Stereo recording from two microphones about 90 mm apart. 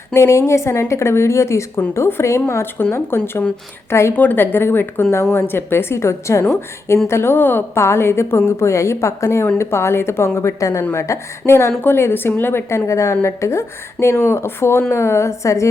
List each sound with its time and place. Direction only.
0.1 s a woman's voice: 30° left (ahead or behind)
4.1 s a woman's voice: 20° left (ahead or behind)